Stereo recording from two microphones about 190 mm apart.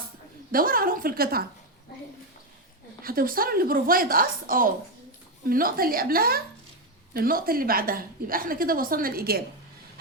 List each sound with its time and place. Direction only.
0.5 s a woman's voice: 50° right (ahead or behind)
3.0 s a woman's voice: 50° right (ahead or behind)